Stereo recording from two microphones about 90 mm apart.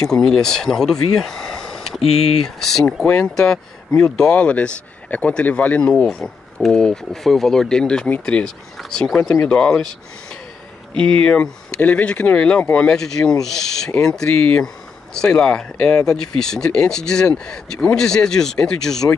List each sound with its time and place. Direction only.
0.1 s speech: 5° left (ahead or behind)
11.0 s speech: 10° left (ahead or behind)